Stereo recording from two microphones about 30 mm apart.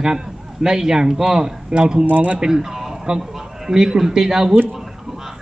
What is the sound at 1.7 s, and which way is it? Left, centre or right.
A man's voice, right.